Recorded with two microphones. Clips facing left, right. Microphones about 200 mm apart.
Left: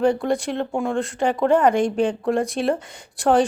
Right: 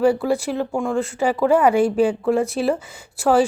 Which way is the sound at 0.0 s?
5° right (ahead or behind).